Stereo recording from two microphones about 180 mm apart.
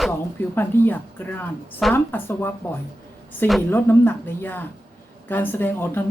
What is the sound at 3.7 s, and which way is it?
A woman's voice, 10° left (ahead or behind).